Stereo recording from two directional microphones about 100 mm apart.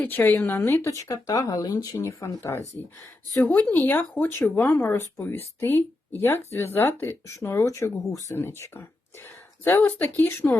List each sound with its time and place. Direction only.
0.0 s speech: 20° left (ahead or behind)
0.9 s speech: 35° left (ahead or behind)